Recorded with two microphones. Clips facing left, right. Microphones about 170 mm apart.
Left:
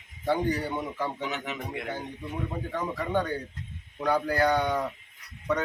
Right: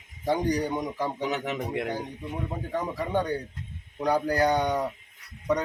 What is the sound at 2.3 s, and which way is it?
A man's voice, 15° right (ahead or behind).